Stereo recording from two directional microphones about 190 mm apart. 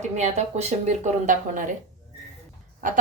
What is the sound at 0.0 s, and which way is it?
Speech, 40° right (ahead or behind).